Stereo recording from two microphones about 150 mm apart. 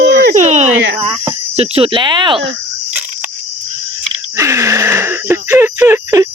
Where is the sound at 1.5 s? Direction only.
40° right (ahead or behind).